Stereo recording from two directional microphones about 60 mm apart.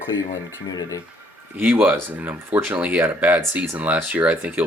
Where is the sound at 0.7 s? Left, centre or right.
Left.